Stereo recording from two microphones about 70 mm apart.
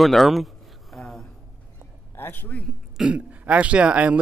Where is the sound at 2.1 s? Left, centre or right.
Left.